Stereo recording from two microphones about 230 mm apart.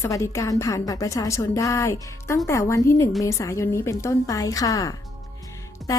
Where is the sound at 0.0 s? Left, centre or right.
Centre.